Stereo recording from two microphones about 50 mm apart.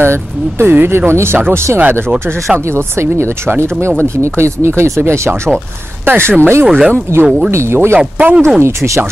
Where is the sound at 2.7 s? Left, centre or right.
Right.